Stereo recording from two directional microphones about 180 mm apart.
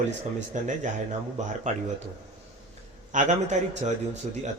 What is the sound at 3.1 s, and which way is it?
A man's voice, 40° right (ahead or behind).